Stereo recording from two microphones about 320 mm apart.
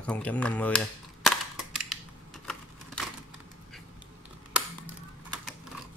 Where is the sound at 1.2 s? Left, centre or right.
Centre.